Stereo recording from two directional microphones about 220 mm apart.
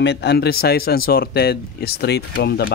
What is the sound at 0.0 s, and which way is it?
Speech, 50° left (ahead or behind).